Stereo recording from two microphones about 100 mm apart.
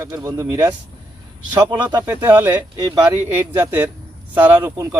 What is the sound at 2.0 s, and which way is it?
Speech, 20° right (ahead or behind).